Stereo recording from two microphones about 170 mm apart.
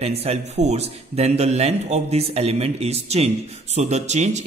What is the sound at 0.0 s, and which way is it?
A man's voice, 35° right (ahead or behind).